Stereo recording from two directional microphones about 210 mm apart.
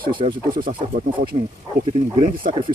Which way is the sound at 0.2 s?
30° right (ahead or behind).